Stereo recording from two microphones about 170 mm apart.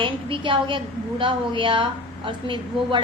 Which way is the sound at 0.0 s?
30° right (ahead or behind).